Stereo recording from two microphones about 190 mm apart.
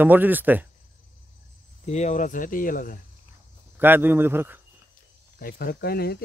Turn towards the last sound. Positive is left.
turn(degrees=55)  # may be behind; listen again after turning